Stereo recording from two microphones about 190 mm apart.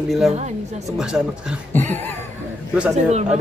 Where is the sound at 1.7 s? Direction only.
10° left (ahead or behind).